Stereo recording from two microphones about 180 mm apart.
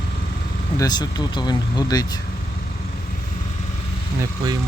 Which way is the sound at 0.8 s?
20° left (ahead or behind).